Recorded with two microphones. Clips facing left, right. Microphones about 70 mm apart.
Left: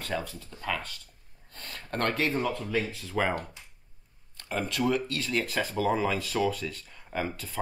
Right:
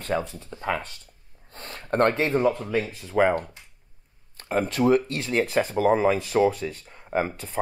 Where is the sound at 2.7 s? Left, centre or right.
Centre.